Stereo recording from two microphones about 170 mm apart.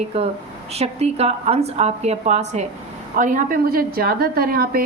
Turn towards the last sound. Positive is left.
turn(degrees=-60)  # may be behind; listen again after turning